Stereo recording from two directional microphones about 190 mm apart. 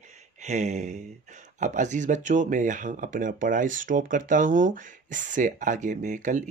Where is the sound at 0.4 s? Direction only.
40° right (ahead or behind).